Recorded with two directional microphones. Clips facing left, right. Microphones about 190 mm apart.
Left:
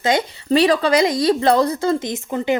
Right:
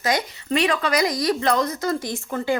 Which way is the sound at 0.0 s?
25° left (ahead or behind).